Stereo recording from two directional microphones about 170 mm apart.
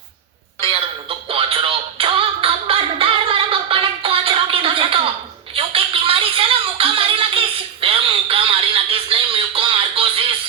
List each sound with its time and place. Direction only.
0.6 s music: 35° right (ahead or behind)